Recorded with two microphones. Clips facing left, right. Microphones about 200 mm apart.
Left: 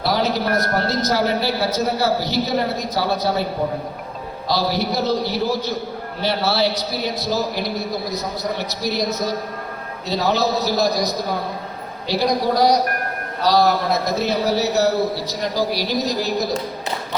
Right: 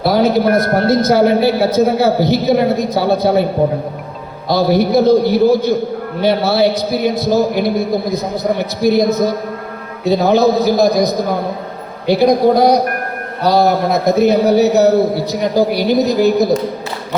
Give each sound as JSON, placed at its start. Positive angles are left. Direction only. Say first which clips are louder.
{"t": 0.0, "sound": "a woman's voice", "louder": "right 8 dB", "side_deg": -55}
{"t": 4.4, "sound": "a man's voice", "louder": "right 8 dB", "side_deg": -55}